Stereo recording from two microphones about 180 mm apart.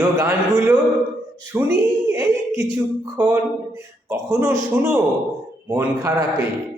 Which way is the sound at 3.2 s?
10° right (ahead or behind).